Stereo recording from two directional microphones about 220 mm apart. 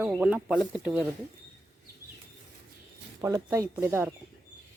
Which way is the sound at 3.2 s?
15° right (ahead or behind).